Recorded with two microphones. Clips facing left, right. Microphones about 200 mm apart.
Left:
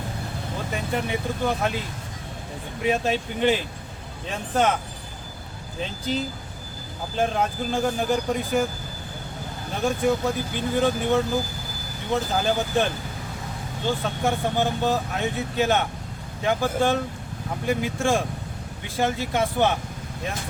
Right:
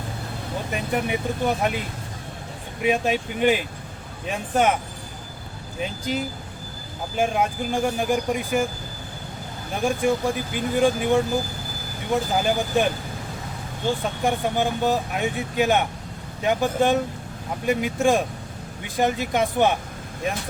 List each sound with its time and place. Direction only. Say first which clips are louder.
0.7 s speech: right 2 dB; 15° right (ahead or behind)
2.8 s speech: right 2 dB; 15° right (ahead or behind)
5.8 s speech: right 1 dB; 10° right (ahead or behind)
9.8 s speech: right 1 dB; 10° right (ahead or behind)